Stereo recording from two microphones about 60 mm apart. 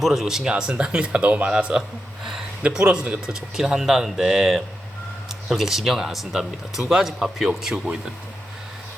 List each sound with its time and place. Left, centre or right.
0.0 s speech: centre